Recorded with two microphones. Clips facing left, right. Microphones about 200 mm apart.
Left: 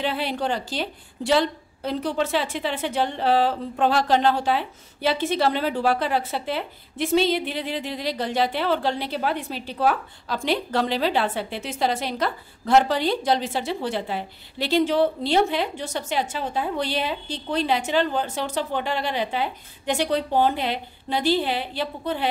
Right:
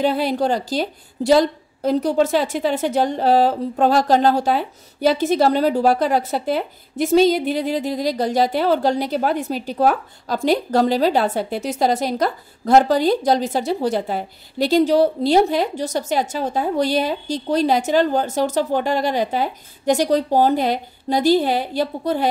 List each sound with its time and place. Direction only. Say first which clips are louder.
0.0 s a woman's voice: right 7 dB; 40° right (ahead or behind)